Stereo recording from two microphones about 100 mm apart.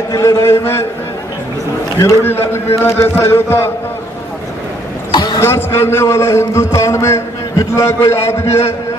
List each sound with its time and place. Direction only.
0.1 s a man's voice: 30° left (ahead or behind)
2.0 s a man's voice: 25° left (ahead or behind)
5.1 s basketball bounce: 45° left (ahead or behind)
5.4 s a man's voice: 25° left (ahead or behind)